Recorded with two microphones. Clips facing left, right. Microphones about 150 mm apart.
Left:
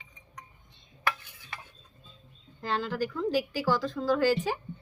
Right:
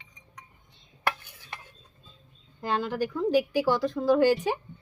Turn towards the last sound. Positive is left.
turn(degrees=-15)  # may be behind; listen again after turning